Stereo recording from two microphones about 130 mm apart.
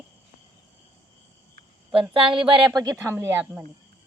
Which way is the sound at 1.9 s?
40° right (ahead or behind).